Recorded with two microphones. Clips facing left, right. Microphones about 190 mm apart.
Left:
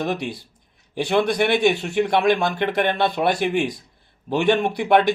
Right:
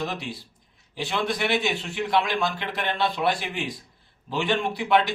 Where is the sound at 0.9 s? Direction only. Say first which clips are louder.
Left 8 dB; 55° left (ahead or behind).